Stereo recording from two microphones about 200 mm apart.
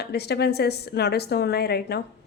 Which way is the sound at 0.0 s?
55° left (ahead or behind).